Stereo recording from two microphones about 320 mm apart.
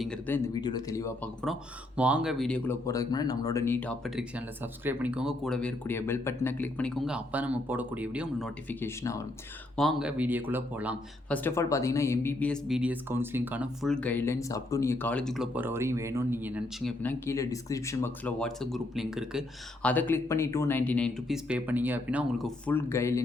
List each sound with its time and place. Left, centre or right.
0.0 s speech: centre
8.8 s speech: centre
11.4 s speech: centre